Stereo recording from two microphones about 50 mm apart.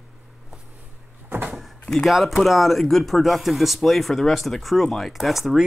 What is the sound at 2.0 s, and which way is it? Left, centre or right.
Speech, centre.